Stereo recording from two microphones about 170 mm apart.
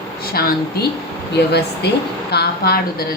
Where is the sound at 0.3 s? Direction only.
65° left (ahead or behind).